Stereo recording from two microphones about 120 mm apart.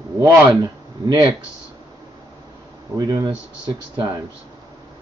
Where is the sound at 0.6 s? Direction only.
35° right (ahead or behind).